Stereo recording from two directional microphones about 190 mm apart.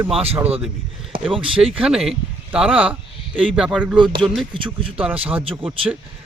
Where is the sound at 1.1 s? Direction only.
30° right (ahead or behind).